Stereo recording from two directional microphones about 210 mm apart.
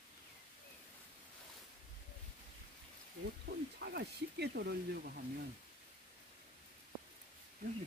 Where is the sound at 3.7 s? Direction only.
50° right (ahead or behind).